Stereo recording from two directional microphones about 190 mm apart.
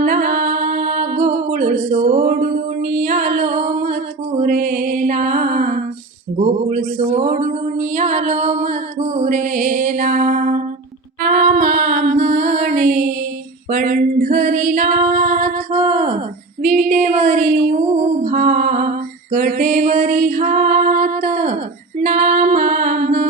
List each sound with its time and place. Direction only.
0.0 s music: 45° right (ahead or behind)
6.4 s a sound: 40° right (ahead or behind)
11.2 s female singing: 45° right (ahead or behind)
16.6 s music: 40° right (ahead or behind)
22.0 s female singing: 45° right (ahead or behind)